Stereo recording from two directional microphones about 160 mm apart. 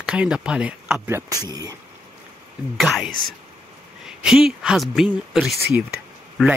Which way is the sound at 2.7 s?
Centre (ahead or behind).